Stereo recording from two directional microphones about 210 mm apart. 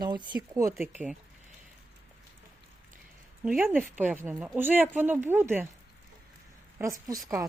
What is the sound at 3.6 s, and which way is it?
Speech, 10° right (ahead or behind).